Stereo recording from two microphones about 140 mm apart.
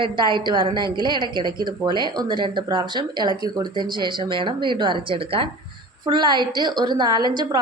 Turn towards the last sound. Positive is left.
turn(degrees=-30)  # may be behind; listen again after turning